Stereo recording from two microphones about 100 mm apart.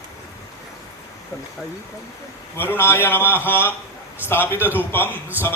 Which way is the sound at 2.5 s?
20° left (ahead or behind).